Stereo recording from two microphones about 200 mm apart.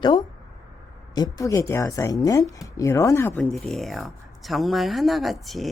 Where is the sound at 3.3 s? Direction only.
Centre (ahead or behind).